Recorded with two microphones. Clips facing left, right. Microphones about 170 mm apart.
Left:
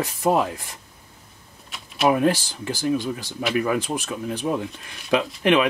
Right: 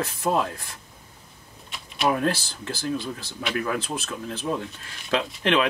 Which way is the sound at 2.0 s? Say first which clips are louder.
Left 4 dB; 15° left (ahead or behind).